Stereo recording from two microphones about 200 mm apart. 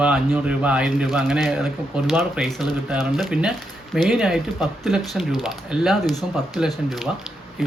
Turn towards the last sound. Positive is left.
turn(degrees=0)  # may be behind; listen again after turning